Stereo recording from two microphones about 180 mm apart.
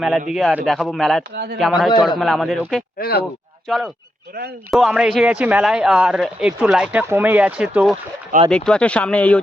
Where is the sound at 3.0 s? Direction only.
60° left (ahead or behind).